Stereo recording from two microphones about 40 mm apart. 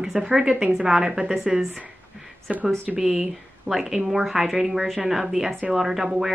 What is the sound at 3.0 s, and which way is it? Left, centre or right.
Speech, centre.